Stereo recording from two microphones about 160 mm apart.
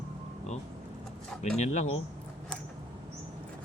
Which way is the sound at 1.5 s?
45° left (ahead or behind).